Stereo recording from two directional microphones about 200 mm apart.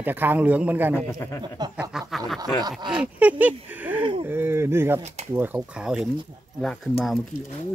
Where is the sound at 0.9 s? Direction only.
15° left (ahead or behind).